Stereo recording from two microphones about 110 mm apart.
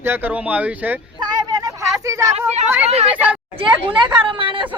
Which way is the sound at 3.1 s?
15° right (ahead or behind).